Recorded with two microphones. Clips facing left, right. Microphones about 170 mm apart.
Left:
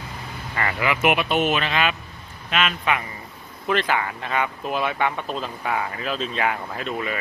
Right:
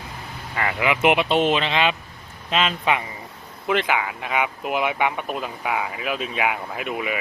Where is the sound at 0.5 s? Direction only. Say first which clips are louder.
Right 1 dB; 10° right (ahead or behind); by 3.0 s 30° right (ahead or behind).